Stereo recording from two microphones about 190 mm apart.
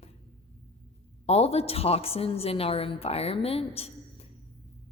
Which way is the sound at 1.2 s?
30° left (ahead or behind).